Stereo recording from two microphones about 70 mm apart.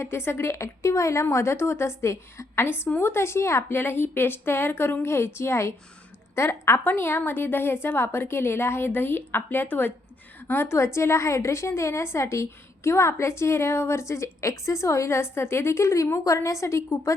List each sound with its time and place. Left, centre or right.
0.0 s a woman's voice: left